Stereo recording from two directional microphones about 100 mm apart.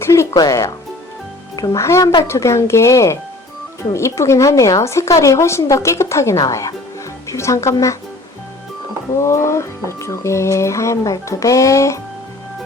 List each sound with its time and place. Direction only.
0.0 s music: 30° left (ahead or behind)
0.3 s a woman's voice: 35° left (ahead or behind)
9.2 s a woman's voice: 30° left (ahead or behind)